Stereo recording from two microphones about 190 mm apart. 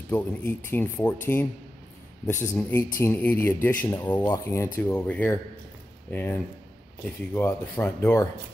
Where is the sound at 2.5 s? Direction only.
10° left (ahead or behind).